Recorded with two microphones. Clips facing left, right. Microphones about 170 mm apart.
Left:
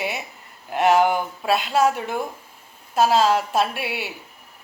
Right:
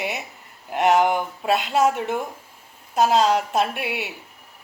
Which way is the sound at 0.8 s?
20° right (ahead or behind).